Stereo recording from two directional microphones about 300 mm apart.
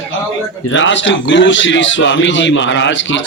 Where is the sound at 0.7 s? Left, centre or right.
Left.